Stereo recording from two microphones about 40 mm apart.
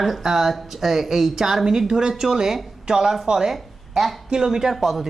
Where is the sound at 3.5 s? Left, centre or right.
Centre.